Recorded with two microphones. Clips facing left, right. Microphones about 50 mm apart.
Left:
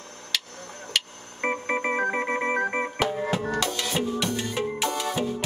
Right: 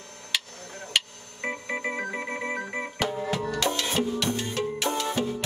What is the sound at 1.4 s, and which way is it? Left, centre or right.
Organ, left.